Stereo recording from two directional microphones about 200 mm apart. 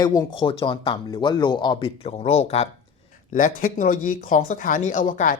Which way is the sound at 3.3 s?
40° left (ahead or behind).